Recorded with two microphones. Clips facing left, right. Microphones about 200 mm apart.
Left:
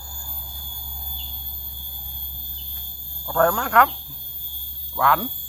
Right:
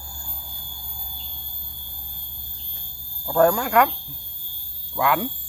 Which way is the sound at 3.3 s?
15° right (ahead or behind).